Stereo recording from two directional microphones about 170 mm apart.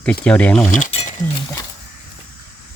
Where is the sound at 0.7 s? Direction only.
40° left (ahead or behind).